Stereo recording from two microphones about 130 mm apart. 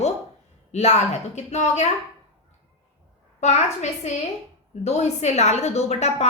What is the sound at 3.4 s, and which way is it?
A woman's voice, 60° left (ahead or behind).